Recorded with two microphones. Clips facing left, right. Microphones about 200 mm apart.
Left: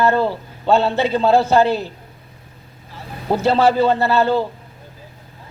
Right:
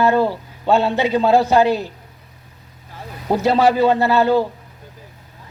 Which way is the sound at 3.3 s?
15° right (ahead or behind).